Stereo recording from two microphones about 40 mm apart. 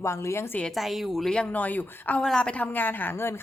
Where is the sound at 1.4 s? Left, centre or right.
Left.